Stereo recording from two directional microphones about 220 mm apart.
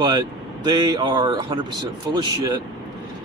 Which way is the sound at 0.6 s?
20° right (ahead or behind).